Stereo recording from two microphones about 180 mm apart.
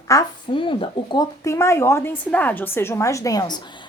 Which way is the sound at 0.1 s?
25° left (ahead or behind).